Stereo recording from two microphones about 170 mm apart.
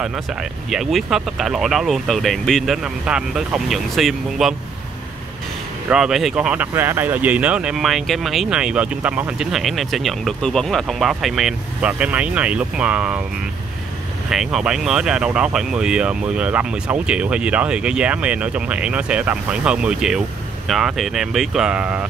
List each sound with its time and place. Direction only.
0.0 s speech: 5° right (ahead or behind)
5.9 s speech: 5° right (ahead or behind)
14.3 s speech: 5° right (ahead or behind)